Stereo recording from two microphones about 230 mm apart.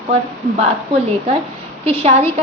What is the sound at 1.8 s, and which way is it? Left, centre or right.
Speech, right.